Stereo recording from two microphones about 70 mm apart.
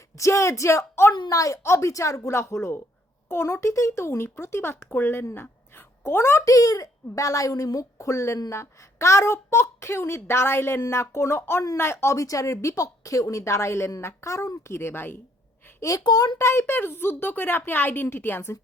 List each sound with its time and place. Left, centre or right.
0.2 s speech: left
1.3 s a woman's voice: left
14.7 s a woman's voice: left
15.8 s speech: left
16.0 s speech: left
16.4 s a woman's voice: left